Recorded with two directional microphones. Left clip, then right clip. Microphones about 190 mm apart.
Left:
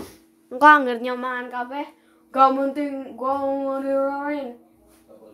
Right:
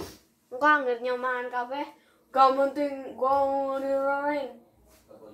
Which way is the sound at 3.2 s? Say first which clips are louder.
Even; 40° left (ahead or behind).